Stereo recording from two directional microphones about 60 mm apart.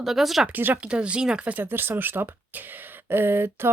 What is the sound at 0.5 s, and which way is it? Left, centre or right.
Speech, right.